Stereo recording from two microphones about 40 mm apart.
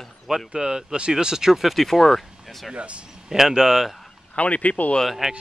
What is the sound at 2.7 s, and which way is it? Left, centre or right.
Speech, right.